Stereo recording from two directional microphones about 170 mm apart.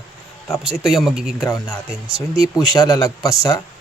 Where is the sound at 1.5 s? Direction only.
15° left (ahead or behind).